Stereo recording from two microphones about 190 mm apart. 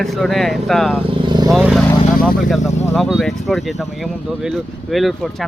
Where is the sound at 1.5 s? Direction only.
Centre (ahead or behind).